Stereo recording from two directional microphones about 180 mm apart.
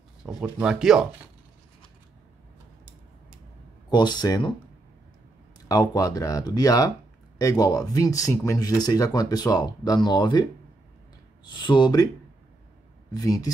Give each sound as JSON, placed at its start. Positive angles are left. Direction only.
{"t": 0.2, "sound": "speech", "side_deg": -5}
{"t": 3.9, "sound": "speech", "side_deg": 25}
{"t": 5.7, "sound": "speech", "side_deg": 20}
{"t": 11.5, "sound": "speech", "side_deg": 25}
{"t": 13.1, "sound": "speech", "side_deg": 20}